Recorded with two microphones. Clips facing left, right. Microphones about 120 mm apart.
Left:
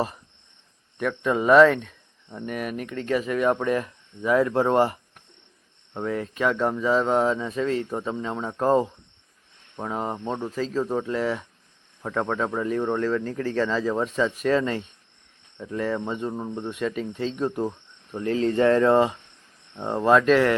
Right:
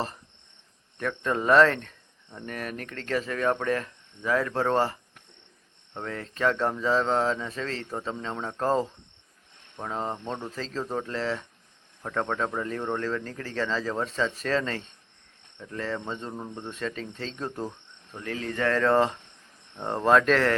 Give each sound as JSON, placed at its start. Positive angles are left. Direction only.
{"t": 0.9, "sound": "speech", "side_deg": 10}
{"t": 18.2, "sound": "speech", "side_deg": 30}